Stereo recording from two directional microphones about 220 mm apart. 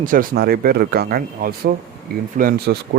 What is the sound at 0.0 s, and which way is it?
Speech, 40° right (ahead or behind).